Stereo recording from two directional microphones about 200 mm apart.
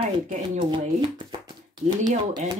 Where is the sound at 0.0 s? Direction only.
30° right (ahead or behind).